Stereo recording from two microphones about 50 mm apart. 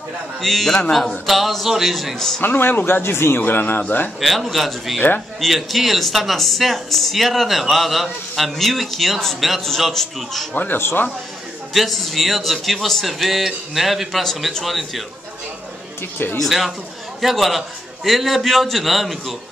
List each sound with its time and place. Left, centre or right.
0.4 s speech: centre
2.4 s speech: left
3.3 s speech: left
4.2 s speech: centre
10.5 s speech: left
10.8 s speech: left
11.7 s speech: centre
16.0 s speech: left
16.3 s speech: centre